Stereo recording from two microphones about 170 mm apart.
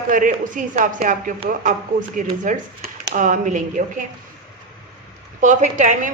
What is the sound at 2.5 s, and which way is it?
Speech, 50° right (ahead or behind).